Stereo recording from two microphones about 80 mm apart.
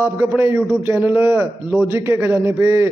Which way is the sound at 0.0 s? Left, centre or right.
Right.